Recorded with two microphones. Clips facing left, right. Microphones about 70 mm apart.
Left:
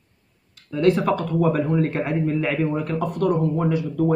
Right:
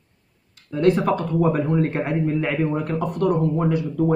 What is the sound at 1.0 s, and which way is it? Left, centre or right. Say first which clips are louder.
Speech: even; right.